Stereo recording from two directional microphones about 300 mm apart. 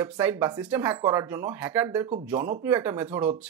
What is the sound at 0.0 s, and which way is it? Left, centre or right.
Speech, centre.